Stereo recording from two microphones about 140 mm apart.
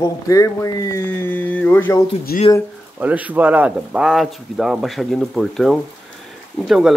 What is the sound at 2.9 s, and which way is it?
Speech, 10° right (ahead or behind).